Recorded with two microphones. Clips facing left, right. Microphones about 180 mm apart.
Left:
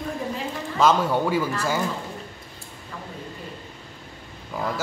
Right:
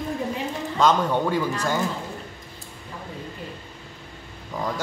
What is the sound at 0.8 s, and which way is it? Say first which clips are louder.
Speech: left 1 dB; 5° left (ahead or behind).